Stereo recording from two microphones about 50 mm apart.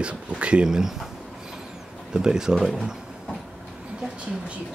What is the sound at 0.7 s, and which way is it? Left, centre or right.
Speech, centre.